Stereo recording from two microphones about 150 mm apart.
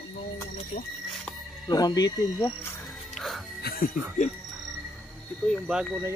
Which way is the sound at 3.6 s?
90° left.